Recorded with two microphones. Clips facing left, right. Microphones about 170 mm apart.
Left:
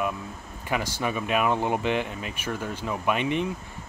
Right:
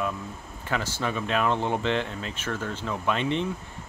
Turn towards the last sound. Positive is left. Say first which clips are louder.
# left 1 dB
turn(degrees=10)  # may be behind; listen again after turning